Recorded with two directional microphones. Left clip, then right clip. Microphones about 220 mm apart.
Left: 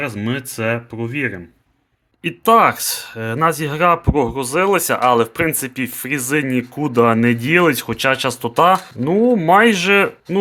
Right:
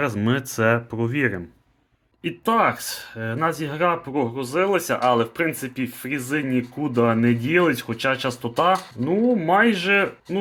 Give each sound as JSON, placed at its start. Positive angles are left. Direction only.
{"t": 0.0, "sound": "speech", "side_deg": 0}
{"t": 2.2, "sound": "speech", "side_deg": 25}